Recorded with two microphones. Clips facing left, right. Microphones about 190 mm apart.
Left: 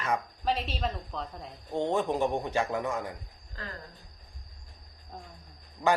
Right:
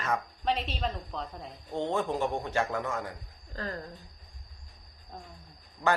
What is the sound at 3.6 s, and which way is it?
Speech, 40° right (ahead or behind).